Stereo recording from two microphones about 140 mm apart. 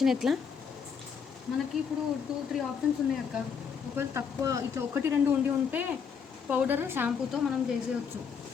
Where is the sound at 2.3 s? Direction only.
Centre (ahead or behind).